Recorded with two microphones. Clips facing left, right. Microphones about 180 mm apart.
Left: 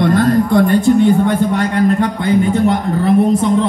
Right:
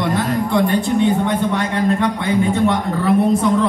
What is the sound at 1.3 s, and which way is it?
A man's voice, 40° left (ahead or behind).